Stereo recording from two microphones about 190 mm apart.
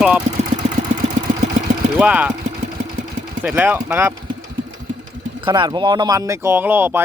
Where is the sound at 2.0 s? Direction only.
5° right (ahead or behind).